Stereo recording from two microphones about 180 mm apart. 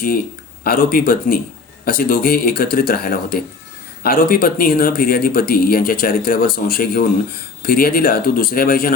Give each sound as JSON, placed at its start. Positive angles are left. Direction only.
{"t": 0.6, "sound": "speech", "side_deg": 55}